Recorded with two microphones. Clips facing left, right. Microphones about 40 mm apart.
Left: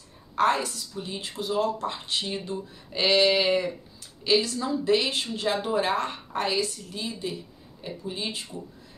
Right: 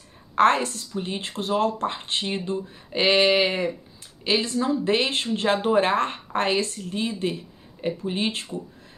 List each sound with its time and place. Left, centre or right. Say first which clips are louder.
0.4 s speech: right 4 dB; right